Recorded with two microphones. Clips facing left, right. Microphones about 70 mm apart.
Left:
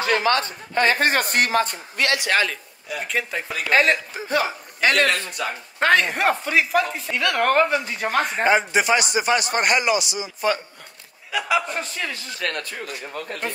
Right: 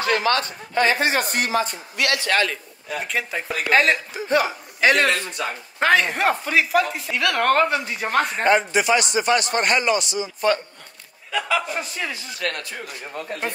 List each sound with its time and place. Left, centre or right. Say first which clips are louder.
0.0 s speech: even; left
0.7 s a man's voice: even; left
2.1 s a man's voice: even; centre
3.0 s speech: even; centre
4.3 s a man's voice: right 2 dB; right
4.8 s speech: right 1 dB; centre
9.6 s a man's voice: even; centre
11.7 s a man's voice: even; centre
12.5 s a man's voice: left 2 dB; left